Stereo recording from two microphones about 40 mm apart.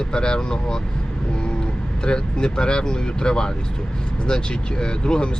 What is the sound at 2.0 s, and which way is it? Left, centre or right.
Speech, left.